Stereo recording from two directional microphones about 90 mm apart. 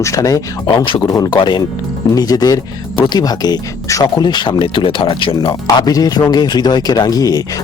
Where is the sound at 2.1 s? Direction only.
45° left (ahead or behind).